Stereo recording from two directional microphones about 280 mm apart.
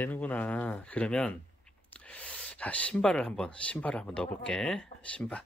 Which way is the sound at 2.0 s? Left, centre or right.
Centre.